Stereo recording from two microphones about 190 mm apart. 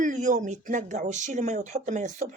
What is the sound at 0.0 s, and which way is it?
A woman's voice, 40° right (ahead or behind).